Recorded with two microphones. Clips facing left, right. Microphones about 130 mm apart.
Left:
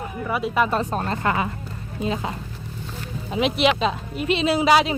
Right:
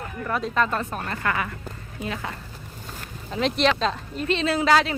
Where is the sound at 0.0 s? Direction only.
10° left (ahead or behind).